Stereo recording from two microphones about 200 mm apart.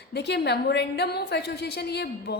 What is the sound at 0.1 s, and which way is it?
A woman's voice, 55° left (ahead or behind).